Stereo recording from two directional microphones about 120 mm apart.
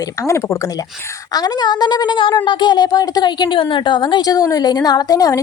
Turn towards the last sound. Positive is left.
turn(degrees=30)  # may be behind; listen again after turning